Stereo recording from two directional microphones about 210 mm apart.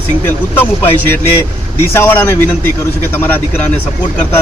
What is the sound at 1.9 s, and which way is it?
Speech, 10° left (ahead or behind).